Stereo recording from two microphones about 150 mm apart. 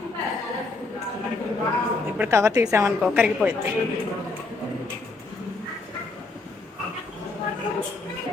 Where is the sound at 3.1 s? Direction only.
10° right (ahead or behind).